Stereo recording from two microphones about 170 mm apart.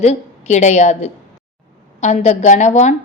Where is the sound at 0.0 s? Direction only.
40° left (ahead or behind).